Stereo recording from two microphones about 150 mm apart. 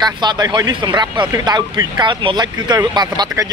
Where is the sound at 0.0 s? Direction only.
30° right (ahead or behind).